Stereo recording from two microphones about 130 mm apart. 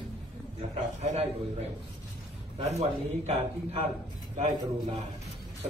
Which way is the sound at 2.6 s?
55° right (ahead or behind).